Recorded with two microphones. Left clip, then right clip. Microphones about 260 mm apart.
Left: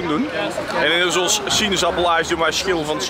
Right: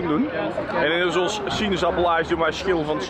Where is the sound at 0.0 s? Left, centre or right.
Centre.